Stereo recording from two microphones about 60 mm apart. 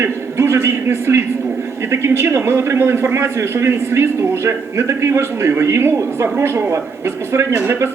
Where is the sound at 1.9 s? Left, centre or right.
Right.